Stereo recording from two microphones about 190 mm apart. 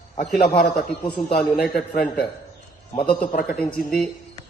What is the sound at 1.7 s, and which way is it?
Speech, 5° left (ahead or behind).